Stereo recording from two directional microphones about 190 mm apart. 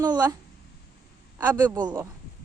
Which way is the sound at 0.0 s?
20° right (ahead or behind).